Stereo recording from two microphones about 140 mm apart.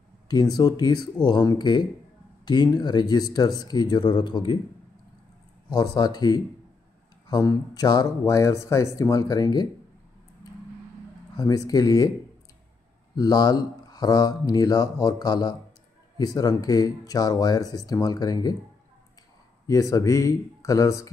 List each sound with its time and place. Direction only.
0.3 s speech: 30° left (ahead or behind)
5.7 s speech: 30° left (ahead or behind)
11.3 s speech: 25° left (ahead or behind)
13.1 s speech: 30° left (ahead or behind)
19.7 s speech: 25° left (ahead or behind)